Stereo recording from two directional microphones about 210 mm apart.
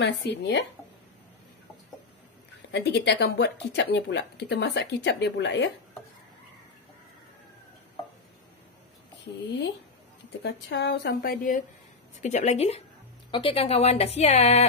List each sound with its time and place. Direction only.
0.0 s speech: 55° left (ahead or behind)
2.7 s speech: 55° left (ahead or behind)
10.4 s a woman's voice: 50° left (ahead or behind); by 14.7 s 30° left (ahead or behind)